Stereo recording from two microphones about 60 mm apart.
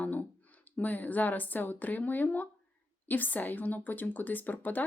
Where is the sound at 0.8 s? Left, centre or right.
Left.